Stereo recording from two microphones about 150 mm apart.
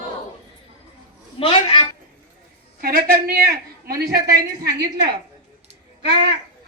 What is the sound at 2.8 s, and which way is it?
A man's voice, 80° right.